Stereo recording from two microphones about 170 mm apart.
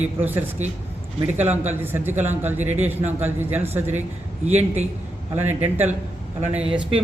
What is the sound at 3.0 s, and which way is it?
Speech, 40° right (ahead or behind).